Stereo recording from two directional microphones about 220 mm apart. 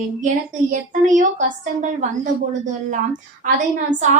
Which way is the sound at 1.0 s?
35° right (ahead or behind).